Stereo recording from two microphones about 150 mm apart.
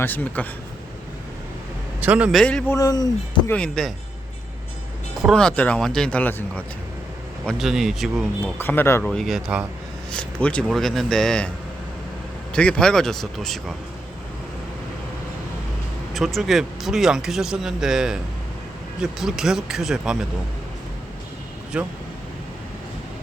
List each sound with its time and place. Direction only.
0.0 s speech: 10° left (ahead or behind)
2.0 s a man's voice: 10° right (ahead or behind)
2.3 s speech: 5° left (ahead or behind)
2.7 s speech: 25° left (ahead or behind)
3.5 s speech: 5° left (ahead or behind)
5.2 s speech: 5° left (ahead or behind)
7.4 s speech: centre (ahead or behind)
8.5 s speech: 15° left (ahead or behind)
9.0 s speech: centre (ahead or behind)
10.1 s speech: 5° left (ahead or behind)
12.5 s speech: 5° left (ahead or behind)
16.1 s speech: centre (ahead or behind)
19.2 s speech: 5° right (ahead or behind)
21.7 s speech: 5° right (ahead or behind)